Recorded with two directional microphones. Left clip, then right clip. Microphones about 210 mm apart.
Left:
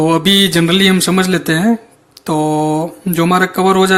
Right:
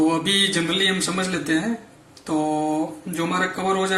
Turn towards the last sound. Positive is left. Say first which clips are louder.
# left 11 dB
turn(degrees=50)  # may be behind; listen again after turning